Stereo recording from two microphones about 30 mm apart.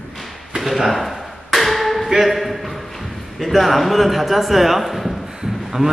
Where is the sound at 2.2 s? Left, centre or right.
Centre.